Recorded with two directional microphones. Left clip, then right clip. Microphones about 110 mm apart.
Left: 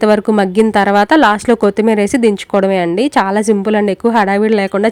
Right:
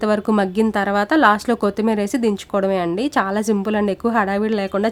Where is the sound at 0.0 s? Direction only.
45° left (ahead or behind).